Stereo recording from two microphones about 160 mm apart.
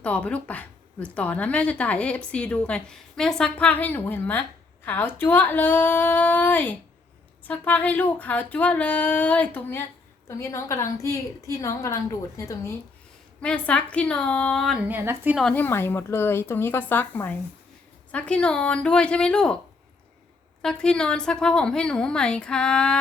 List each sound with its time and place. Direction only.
0.0 s a woman's voice: 10° left (ahead or behind)
13.4 s a woman's voice: 5° left (ahead or behind); by 15.4 s 15° right (ahead or behind)
15.5 s speech: 10° left (ahead or behind)
20.6 s a woman's voice: 5° left (ahead or behind)